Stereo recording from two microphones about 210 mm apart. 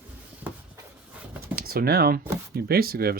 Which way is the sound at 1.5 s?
45° right (ahead or behind).